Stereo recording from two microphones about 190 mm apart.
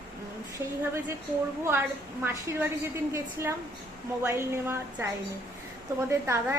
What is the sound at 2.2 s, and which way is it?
A woman's voice, 10° right (ahead or behind).